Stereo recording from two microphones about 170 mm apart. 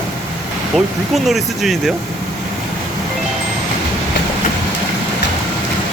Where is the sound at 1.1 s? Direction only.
Centre (ahead or behind).